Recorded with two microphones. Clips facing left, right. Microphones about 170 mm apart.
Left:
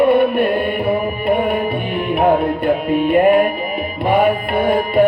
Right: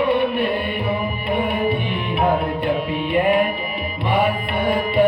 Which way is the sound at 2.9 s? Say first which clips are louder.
Left 9 dB; 45° left (ahead or behind).